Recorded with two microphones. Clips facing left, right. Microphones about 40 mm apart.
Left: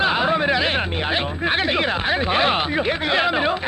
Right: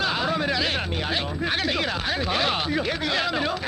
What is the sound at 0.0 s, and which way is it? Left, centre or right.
Speech, left.